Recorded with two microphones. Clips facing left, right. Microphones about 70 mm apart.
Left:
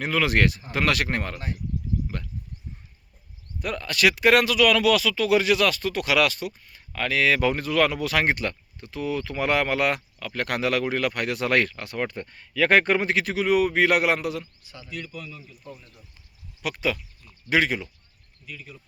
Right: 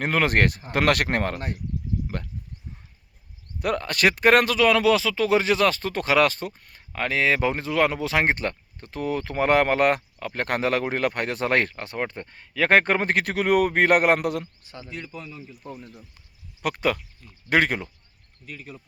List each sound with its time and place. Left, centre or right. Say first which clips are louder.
0.0 s speech: right 1 dB; right
3.6 s speech: right 1 dB; right
14.7 s a man's voice: left 2 dB; right
15.6 s speech: right 4 dB; right